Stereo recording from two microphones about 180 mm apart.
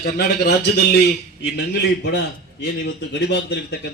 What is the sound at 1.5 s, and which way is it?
A man's voice, 70° left (ahead or behind).